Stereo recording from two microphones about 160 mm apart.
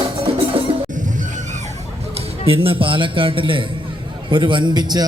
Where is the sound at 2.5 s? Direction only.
35° right (ahead or behind).